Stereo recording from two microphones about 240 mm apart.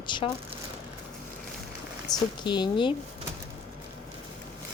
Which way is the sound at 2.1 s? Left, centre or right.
Centre.